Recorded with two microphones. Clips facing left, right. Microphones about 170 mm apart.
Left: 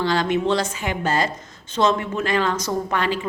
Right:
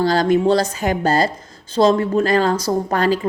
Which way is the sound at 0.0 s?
40° right (ahead or behind).